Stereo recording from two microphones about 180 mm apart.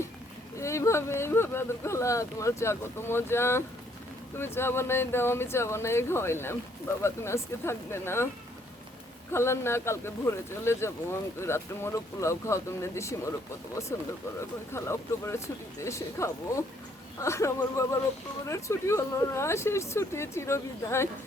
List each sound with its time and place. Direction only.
0.6 s speech: 15° left (ahead or behind)
9.3 s speech: 15° left (ahead or behind)